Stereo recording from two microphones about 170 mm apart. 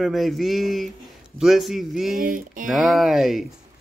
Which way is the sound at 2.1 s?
55° right (ahead or behind).